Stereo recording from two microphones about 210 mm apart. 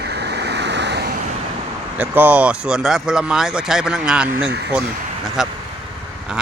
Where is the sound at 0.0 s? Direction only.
50° right (ahead or behind).